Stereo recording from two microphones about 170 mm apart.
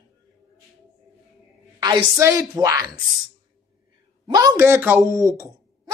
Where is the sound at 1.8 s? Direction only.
20° right (ahead or behind).